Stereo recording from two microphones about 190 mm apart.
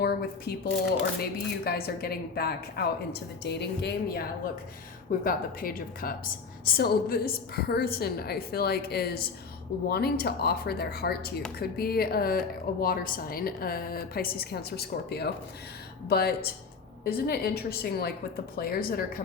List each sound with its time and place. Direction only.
0.0 s a woman's voice: 55° left (ahead or behind)
5.2 s a woman's voice: 50° left (ahead or behind)